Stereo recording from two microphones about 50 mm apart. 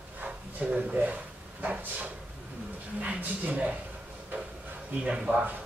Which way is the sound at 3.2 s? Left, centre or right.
Right.